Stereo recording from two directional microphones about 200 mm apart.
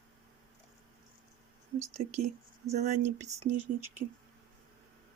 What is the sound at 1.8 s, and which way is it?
Speech, 35° right (ahead or behind).